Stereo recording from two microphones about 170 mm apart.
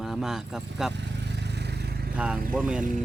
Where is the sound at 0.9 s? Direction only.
90° right; by 2.1 s 70° right (ahead or behind).